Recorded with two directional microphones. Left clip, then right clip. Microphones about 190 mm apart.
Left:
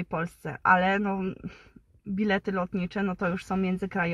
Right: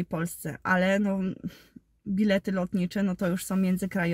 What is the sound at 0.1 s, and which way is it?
A woman's voice, 15° right (ahead or behind).